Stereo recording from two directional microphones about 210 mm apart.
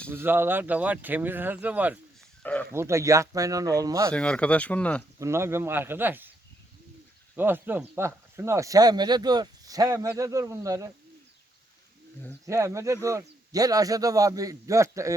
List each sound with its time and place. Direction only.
0.1 s speech: 10° right (ahead or behind)
2.4 s speech: 10° left (ahead or behind)
2.7 s speech: 15° right (ahead or behind)
4.1 s speech: 5° left (ahead or behind)
5.2 s speech: 10° right (ahead or behind)
7.3 s speech: 10° right (ahead or behind)
12.5 s speech: 15° right (ahead or behind)